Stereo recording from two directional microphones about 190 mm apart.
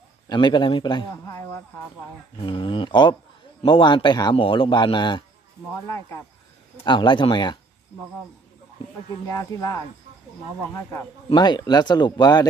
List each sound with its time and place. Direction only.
0.3 s speech: 25° left (ahead or behind)
9.3 s speech: 15° left (ahead or behind)
11.2 s speech: 25° left (ahead or behind)